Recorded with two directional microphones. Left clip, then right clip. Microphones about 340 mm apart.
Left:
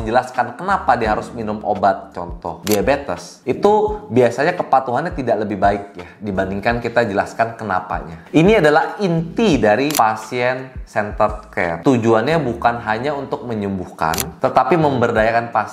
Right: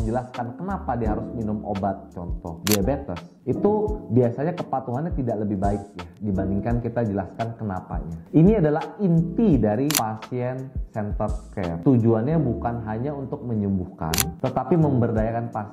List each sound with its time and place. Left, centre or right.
0.0 s speech: centre
2.6 s speech: centre